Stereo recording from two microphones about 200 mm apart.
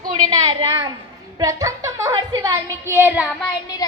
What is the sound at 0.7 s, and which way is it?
A woman's voice, 25° right (ahead or behind).